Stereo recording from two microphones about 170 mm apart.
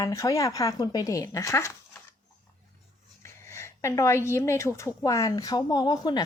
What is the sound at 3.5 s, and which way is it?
A woman's voice, 15° left (ahead or behind).